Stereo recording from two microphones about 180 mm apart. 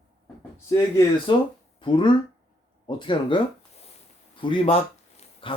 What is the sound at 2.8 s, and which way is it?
Speech, 25° left (ahead or behind).